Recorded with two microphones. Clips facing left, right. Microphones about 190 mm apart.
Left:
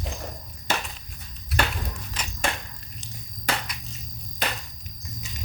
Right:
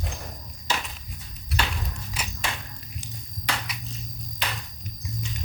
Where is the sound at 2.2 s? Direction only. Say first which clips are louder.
Right 1 dB; 10° right (ahead or behind).